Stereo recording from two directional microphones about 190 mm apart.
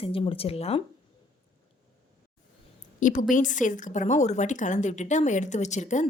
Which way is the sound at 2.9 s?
40° left (ahead or behind).